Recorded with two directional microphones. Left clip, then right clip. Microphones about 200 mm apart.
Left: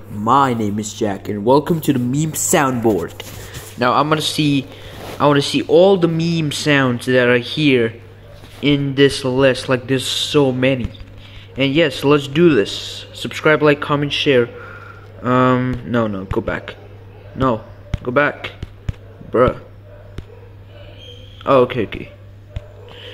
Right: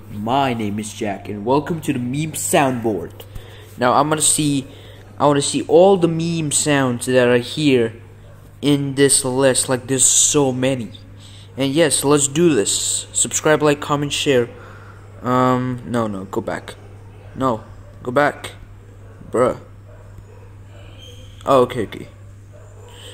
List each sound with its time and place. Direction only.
0.2 s speech: 5° left (ahead or behind)
1.4 s speech: 25° left (ahead or behind); by 16.7 s 5° left (ahead or behind)
18.0 s speech: 5° left (ahead or behind)
21.5 s speech: 5° left (ahead or behind)